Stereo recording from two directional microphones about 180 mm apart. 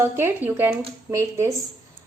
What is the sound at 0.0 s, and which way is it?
A woman's voice, 10° right (ahead or behind).